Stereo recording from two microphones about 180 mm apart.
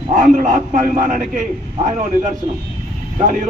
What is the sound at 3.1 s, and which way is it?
Speech, 45° right (ahead or behind).